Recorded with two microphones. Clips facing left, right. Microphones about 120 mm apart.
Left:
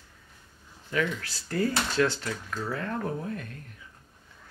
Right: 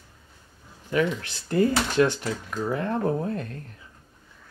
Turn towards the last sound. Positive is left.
turn(degrees=-35)  # may be behind; listen again after turning